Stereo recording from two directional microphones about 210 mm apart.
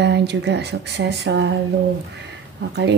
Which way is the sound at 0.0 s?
55° right (ahead or behind).